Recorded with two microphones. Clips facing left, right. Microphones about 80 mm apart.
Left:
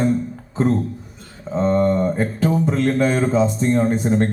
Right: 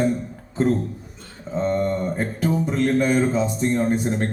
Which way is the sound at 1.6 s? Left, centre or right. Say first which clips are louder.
Left 4 dB; left.